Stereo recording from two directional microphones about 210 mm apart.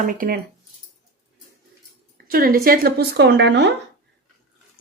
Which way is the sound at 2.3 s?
45° right (ahead or behind).